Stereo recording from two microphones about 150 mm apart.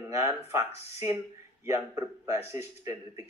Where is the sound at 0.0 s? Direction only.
20° right (ahead or behind).